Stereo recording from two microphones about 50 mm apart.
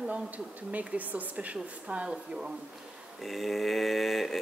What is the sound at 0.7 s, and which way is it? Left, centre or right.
Speech, right.